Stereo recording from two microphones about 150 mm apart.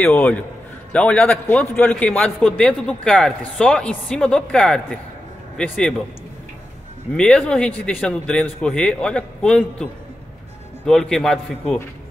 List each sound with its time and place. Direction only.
0.0 s a man's voice: 10° left (ahead or behind)
7.2 s a man's voice: 5° left (ahead or behind)
10.9 s a man's voice: 5° left (ahead or behind)